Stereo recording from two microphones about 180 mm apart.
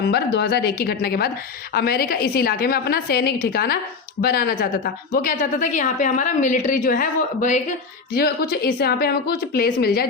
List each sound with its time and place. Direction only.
0.1 s a woman's voice: 65° left (ahead or behind); by 7.6 s 45° left (ahead or behind)
8.1 s a woman's voice: 60° left (ahead or behind)